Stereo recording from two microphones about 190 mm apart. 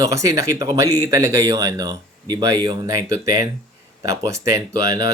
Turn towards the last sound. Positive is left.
turn(degrees=-20)  # may be behind; listen again after turning